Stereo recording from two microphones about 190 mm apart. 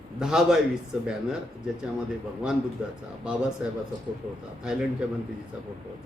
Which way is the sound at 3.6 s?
5° right (ahead or behind).